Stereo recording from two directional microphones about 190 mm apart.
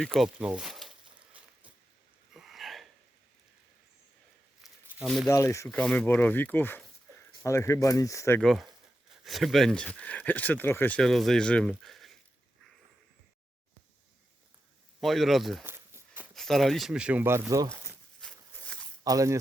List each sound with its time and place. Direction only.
0.0 s a sound: centre (ahead or behind)
4.6 s a sound: centre (ahead or behind)
5.3 s speech: 15° left (ahead or behind)
5.6 s speech: 5° left (ahead or behind)
8.4 s speech: centre (ahead or behind)
15.0 s speech: centre (ahead or behind)
15.6 s walk: 10° right (ahead or behind)
16.3 s speech: centre (ahead or behind); by 17.7 s 15° right (ahead or behind)
18.2 s a sound: 5° left (ahead or behind)
19.0 s speech: 15° right (ahead or behind)